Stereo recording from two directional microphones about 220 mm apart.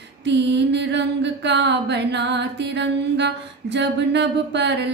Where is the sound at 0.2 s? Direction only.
50° right (ahead or behind).